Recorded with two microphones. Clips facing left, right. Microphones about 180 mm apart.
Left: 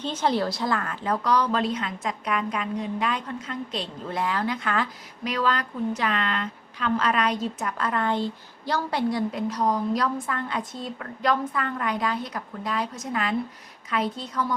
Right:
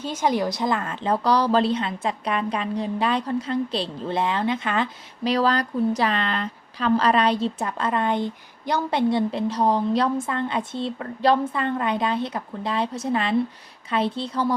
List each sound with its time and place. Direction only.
0.0 s a woman's voice: 10° right (ahead or behind); by 14.5 s 30° right (ahead or behind)